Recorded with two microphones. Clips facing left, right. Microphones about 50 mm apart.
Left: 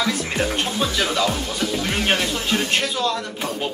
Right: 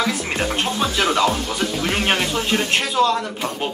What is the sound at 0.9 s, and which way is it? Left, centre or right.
Music, right.